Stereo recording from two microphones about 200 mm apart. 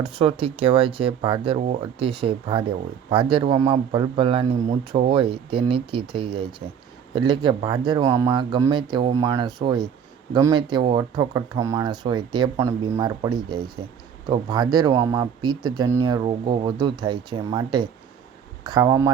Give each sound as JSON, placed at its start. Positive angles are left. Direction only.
{"t": 0.0, "sound": "speech", "side_deg": -25}